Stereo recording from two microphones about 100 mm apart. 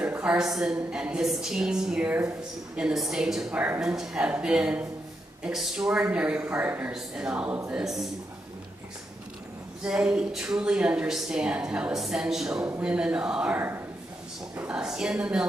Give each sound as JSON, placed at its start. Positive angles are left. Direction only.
{"t": 0.0, "sound": "a woman's voice", "side_deg": -15}
{"t": 3.5, "sound": "speech", "side_deg": -20}
{"t": 3.8, "sound": "speech", "side_deg": -5}
{"t": 9.8, "sound": "speech", "side_deg": -10}
{"t": 14.7, "sound": "speech", "side_deg": -5}